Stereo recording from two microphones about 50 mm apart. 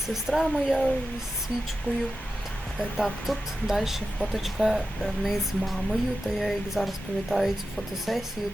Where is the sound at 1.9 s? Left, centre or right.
Left.